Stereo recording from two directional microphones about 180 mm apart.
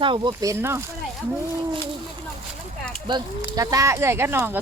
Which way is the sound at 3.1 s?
20° right (ahead or behind).